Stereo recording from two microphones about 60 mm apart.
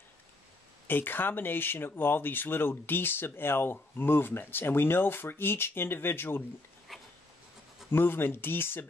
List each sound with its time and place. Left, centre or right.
0.8 s speech: left
6.9 s a sound: centre
7.9 s speech: left